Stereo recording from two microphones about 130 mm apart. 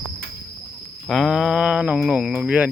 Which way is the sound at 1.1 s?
Centre (ahead or behind).